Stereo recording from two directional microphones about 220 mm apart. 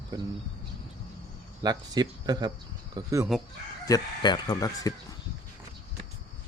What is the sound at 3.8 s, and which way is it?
Speech, 20° left (ahead or behind).